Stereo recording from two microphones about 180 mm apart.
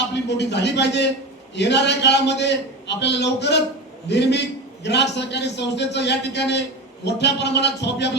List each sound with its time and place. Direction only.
0.1 s a man's voice: 70° left (ahead or behind)